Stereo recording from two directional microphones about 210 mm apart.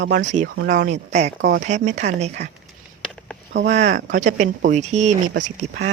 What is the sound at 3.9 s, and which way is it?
Speech, 35° right (ahead or behind).